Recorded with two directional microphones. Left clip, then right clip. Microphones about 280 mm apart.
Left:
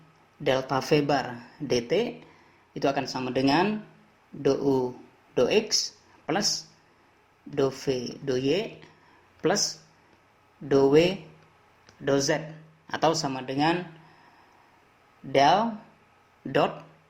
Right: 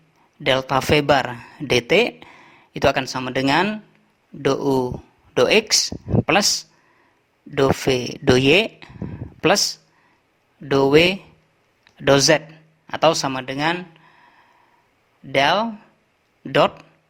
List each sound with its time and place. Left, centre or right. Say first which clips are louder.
0.4 s speech: right 7 dB; right
7.5 s speech: right 8 dB; right
10.7 s speech: right 5 dB; right
15.3 s speech: right 3 dB; right